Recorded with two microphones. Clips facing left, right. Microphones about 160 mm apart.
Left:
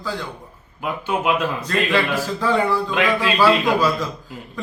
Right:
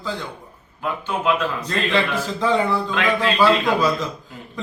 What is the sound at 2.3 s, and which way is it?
Speech, 20° right (ahead or behind).